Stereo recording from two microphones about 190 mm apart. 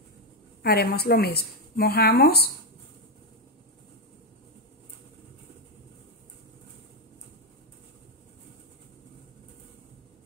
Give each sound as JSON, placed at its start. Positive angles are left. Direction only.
{"t": 0.6, "sound": "a woman's voice", "side_deg": 55}